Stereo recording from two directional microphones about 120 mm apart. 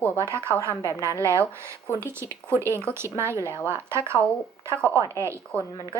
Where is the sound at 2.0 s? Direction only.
20° right (ahead or behind).